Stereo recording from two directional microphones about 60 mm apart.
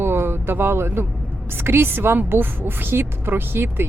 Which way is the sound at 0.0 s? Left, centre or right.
Right.